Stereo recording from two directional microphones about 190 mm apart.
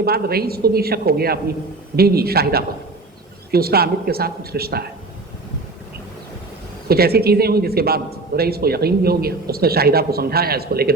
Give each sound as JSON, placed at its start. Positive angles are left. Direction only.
{"t": 0.0, "sound": "a man's voice", "side_deg": -55}
{"t": 6.8, "sound": "a man's voice", "side_deg": -55}